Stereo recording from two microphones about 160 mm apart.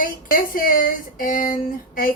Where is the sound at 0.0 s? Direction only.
60° left (ahead or behind).